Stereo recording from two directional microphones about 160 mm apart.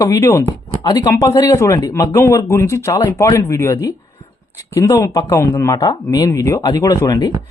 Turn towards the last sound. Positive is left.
turn(degrees=20)  # may be behind; listen again after turning